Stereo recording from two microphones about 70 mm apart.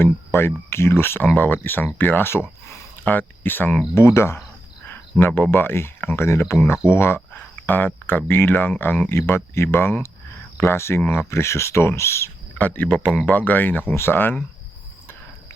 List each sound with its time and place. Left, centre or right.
0.0 s speech: left
12.5 s speech: left